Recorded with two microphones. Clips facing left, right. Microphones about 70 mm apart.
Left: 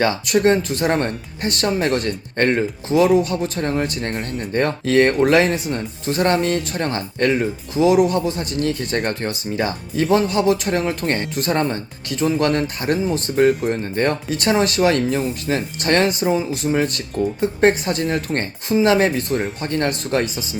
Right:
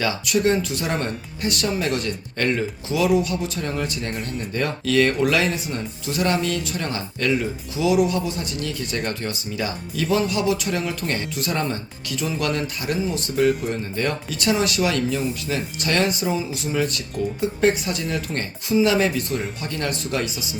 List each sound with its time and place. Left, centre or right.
0.0 s speech: left